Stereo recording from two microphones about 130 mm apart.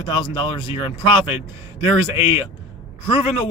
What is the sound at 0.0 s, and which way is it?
Speech, 40° left (ahead or behind).